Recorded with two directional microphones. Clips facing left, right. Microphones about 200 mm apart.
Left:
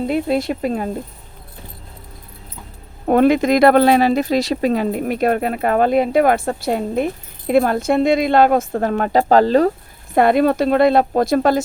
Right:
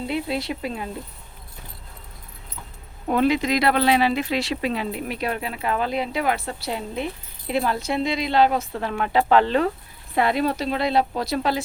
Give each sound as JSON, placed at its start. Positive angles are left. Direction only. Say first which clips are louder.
{"t": 0.0, "sound": "speech", "louder": "left 8 dB", "side_deg": 45}
{"t": 3.1, "sound": "speech", "louder": "left 7 dB", "side_deg": 50}
{"t": 10.2, "sound": "speech", "louder": "left 8 dB", "side_deg": 50}